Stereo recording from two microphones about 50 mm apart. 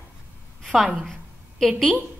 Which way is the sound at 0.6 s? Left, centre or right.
Centre.